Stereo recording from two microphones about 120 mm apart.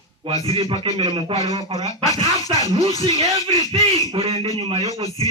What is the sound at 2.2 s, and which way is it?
Speech, 30° left (ahead or behind).